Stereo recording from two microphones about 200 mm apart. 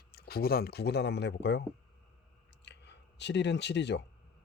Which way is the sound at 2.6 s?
60° left (ahead or behind).